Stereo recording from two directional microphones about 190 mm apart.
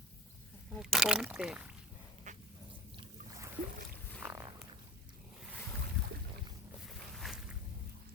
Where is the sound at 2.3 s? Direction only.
40° right (ahead or behind).